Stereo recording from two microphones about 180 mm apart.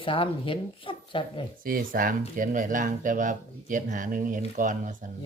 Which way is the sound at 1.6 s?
50° right (ahead or behind).